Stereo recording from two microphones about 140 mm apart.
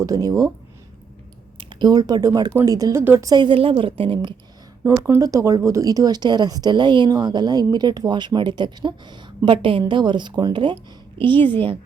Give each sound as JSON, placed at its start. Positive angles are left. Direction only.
{"t": 0.0, "sound": "speech", "side_deg": -25}
{"t": 1.5, "sound": "a woman's voice", "side_deg": -35}
{"t": 3.2, "sound": "speech", "side_deg": -30}
{"t": 5.0, "sound": "speech", "side_deg": -25}